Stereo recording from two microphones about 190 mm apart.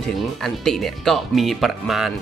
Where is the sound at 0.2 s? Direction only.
Centre (ahead or behind).